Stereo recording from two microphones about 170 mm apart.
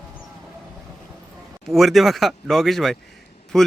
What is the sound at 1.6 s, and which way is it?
Speech, centre (ahead or behind).